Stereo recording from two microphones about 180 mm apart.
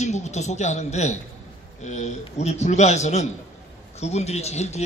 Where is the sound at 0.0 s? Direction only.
40° left (ahead or behind).